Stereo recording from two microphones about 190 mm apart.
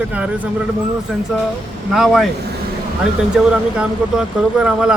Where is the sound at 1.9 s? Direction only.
Centre (ahead or behind).